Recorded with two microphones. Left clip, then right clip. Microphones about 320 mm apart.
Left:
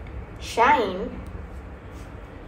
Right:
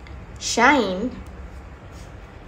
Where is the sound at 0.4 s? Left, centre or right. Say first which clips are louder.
Right 2 dB; right.